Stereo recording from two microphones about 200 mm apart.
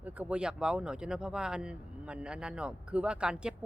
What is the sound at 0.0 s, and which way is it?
Speech, 10° right (ahead or behind).